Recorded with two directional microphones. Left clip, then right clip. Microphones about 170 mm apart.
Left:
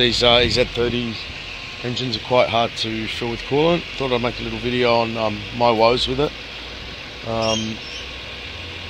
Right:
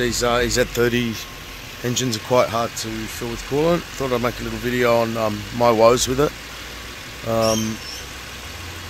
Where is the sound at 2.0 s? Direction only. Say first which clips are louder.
Left 1 dB; 25° right (ahead or behind).